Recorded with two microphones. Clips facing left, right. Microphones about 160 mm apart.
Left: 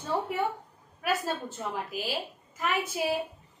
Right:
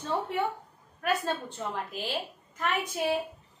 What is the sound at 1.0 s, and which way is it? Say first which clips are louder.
A woman's voice: right 1 dB; 5° left (ahead or behind).